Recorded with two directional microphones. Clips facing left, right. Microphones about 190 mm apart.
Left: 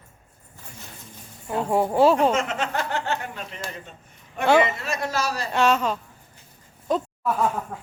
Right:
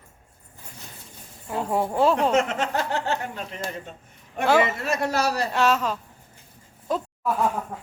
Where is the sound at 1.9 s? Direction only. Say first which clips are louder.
Left 3 dB; 5° left (ahead or behind).